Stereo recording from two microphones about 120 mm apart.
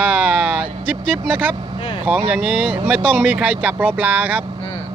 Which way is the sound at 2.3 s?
10° right (ahead or behind).